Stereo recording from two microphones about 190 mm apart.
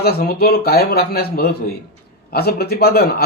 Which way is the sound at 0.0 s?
55° left (ahead or behind).